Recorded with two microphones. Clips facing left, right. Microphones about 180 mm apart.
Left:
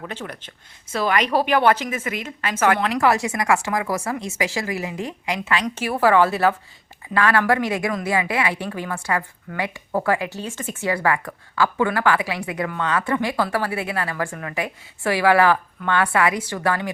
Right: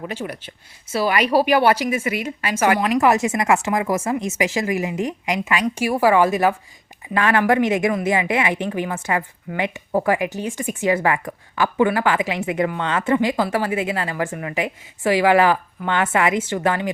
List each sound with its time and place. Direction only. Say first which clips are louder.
0.1 s a woman's voice: right 4 dB; 10° right (ahead or behind)